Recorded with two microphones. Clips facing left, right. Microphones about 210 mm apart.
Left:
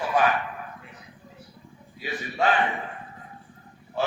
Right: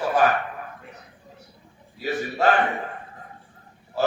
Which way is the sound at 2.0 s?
40° right (ahead or behind).